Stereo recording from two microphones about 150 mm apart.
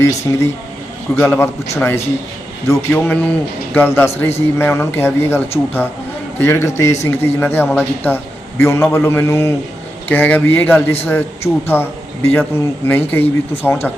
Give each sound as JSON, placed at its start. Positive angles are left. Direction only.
{"t": 0.0, "sound": "a man's voice", "side_deg": 20}